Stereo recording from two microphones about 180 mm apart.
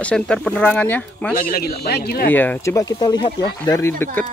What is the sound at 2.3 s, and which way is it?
Speech, 10° left (ahead or behind).